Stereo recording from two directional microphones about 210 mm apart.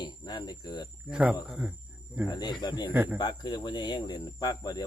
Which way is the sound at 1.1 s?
5° right (ahead or behind).